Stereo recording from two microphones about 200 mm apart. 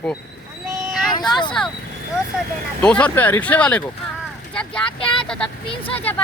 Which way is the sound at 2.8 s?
5° left (ahead or behind).